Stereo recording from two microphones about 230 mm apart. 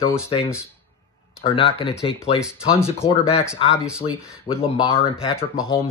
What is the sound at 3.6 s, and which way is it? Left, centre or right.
Speech, left.